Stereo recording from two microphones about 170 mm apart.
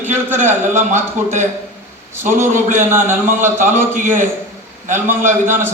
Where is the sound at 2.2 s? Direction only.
50° right (ahead or behind).